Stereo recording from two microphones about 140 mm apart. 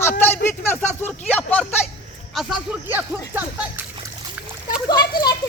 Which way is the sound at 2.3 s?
Centre (ahead or behind).